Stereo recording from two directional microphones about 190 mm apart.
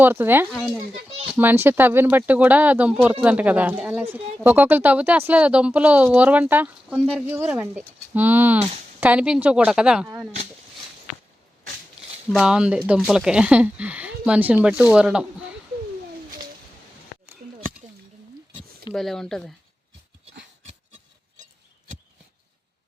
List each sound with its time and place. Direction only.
0.0 s a woman's voice: 10° right (ahead or behind)
12.3 s a woman's voice: 5° right (ahead or behind)
17.4 s a sound: 45° right (ahead or behind)
18.9 s a woman's voice: centre (ahead or behind)